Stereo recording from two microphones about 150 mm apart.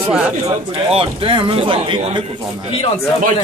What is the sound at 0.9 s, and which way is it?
Speech, 35° right (ahead or behind).